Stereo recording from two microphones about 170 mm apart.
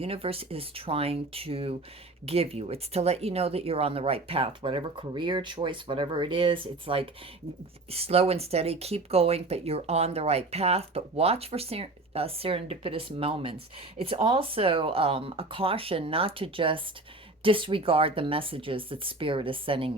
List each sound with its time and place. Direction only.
0.0 s speech: 35° right (ahead or behind)